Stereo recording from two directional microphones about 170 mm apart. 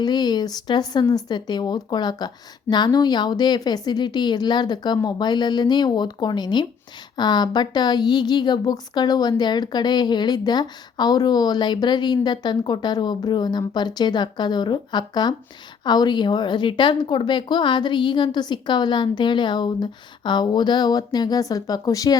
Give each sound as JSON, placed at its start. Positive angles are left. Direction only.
{"t": 0.0, "sound": "a woman's voice", "side_deg": 25}